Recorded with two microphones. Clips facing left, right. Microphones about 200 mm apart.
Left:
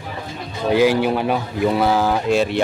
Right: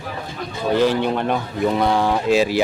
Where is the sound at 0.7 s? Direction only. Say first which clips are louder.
Left 2 dB; 10° left (ahead or behind).